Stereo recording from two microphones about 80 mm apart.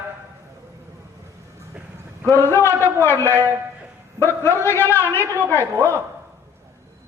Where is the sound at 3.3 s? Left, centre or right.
Right.